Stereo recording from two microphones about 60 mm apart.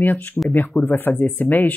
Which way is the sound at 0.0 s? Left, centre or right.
Left.